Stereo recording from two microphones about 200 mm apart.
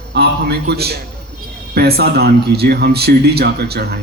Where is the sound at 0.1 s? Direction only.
55° right (ahead or behind).